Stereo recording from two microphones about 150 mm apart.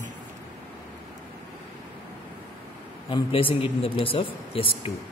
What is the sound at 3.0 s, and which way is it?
Speech, 35° left (ahead or behind).